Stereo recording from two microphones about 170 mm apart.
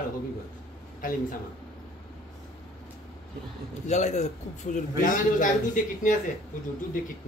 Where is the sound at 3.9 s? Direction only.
45° left (ahead or behind).